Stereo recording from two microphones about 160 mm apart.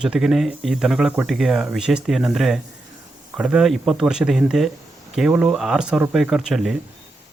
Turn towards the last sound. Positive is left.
turn(degrees=-5)  # may be behind; listen again after turning